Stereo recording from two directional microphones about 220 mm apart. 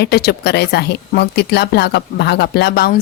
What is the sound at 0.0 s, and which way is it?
Speech, 45° left (ahead or behind).